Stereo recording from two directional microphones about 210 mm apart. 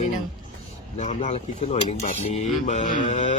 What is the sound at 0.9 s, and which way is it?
Cutlery, 35° left (ahead or behind).